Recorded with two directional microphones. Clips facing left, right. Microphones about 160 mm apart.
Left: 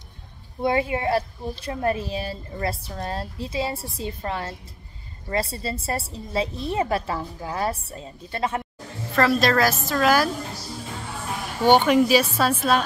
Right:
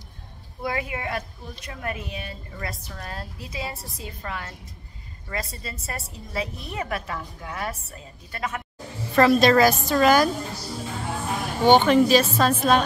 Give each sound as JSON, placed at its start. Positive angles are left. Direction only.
{"t": 0.6, "sound": "a woman's voice", "side_deg": 25}
{"t": 9.1, "sound": "a woman's voice", "side_deg": 0}
{"t": 11.6, "sound": "speech", "side_deg": 10}